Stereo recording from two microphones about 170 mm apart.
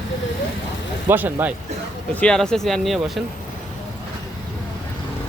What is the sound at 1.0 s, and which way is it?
Speech, 10° right (ahead or behind).